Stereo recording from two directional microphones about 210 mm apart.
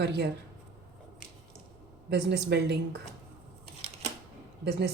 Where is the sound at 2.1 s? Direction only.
55° right (ahead or behind).